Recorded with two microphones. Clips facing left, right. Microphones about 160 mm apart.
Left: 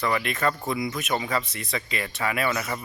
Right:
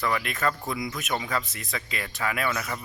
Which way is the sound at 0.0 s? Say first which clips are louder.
Left 2 dB; centre (ahead or behind).